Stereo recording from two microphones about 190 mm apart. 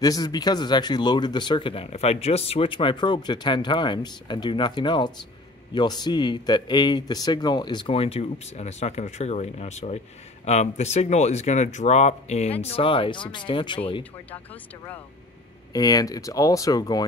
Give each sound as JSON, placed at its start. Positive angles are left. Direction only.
{"t": 0.0, "sound": "speech", "side_deg": 20}
{"t": 14.3, "sound": "speech", "side_deg": 10}